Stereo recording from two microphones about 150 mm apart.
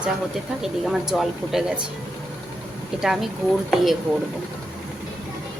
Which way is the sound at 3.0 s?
5° right (ahead or behind).